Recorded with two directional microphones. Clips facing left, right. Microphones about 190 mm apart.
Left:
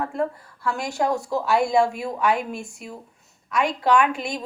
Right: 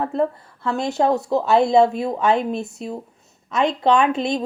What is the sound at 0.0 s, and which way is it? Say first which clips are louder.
A woman's voice: right 4 dB; 20° right (ahead or behind).